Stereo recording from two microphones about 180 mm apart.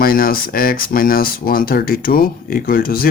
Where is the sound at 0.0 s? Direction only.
55° left (ahead or behind).